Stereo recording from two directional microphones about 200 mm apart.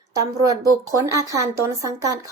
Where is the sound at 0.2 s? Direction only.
15° right (ahead or behind).